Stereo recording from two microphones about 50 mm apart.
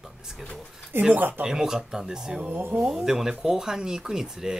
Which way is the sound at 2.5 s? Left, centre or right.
Right.